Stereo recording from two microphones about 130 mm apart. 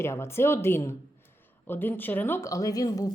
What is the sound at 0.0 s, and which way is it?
Speech, 20° left (ahead or behind).